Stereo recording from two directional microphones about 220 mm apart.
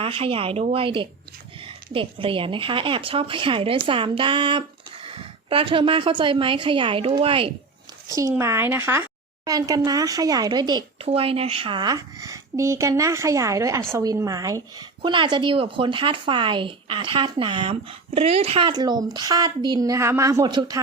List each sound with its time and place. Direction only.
0.0 s a woman's voice: 25° right (ahead or behind)